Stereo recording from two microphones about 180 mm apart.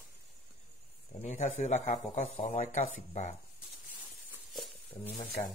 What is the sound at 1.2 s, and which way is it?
A man's voice, 40° left (ahead or behind).